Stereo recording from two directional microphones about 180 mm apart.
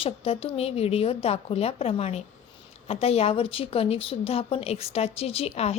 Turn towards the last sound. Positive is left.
turn(degrees=35)  # may be behind; listen again after turning